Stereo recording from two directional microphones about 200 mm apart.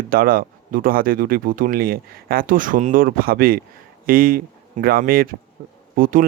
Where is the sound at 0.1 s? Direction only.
45° right (ahead or behind).